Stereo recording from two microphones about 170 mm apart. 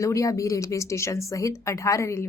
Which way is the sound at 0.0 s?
20° left (ahead or behind).